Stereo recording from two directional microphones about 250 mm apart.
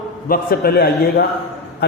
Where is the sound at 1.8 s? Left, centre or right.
Left.